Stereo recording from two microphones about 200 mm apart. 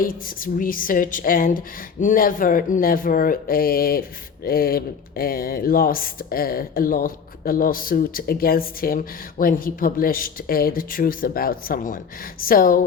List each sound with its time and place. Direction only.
0.0 s speech: 45° left (ahead or behind)